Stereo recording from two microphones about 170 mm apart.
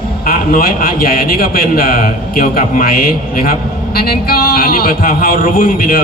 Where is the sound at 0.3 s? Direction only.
60° left (ahead or behind).